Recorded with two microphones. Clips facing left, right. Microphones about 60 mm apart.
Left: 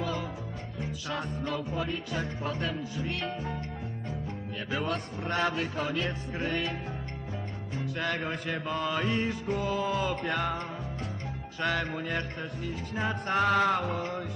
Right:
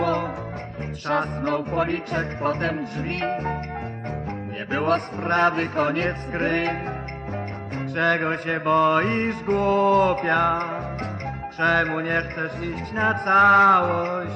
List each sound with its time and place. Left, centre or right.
0.0 s music: right
1.0 s mantra: right
4.7 s mantra: right
7.9 s mantra: right